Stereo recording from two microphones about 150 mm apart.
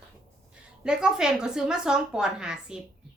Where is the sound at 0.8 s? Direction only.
5° right (ahead or behind).